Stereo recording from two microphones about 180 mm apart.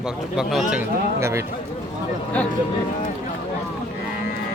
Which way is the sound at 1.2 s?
15° right (ahead or behind).